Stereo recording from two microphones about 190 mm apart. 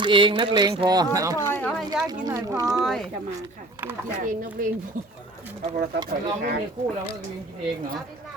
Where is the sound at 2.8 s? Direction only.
Centre (ahead or behind).